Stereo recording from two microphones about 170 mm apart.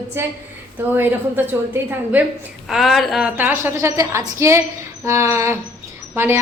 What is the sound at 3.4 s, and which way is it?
A woman's voice, 10° right (ahead or behind).